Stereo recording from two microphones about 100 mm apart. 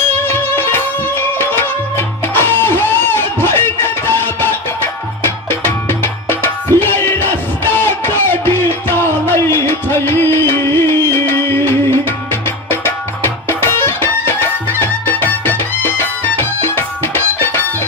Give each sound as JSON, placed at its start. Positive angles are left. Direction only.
{"t": 0.3, "sound": "music", "side_deg": 20}